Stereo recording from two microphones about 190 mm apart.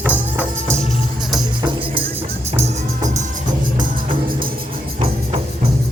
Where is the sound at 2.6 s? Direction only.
40° right (ahead or behind).